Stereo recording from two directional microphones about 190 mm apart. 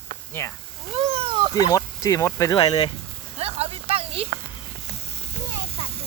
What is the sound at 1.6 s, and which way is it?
Speech, 20° left (ahead or behind).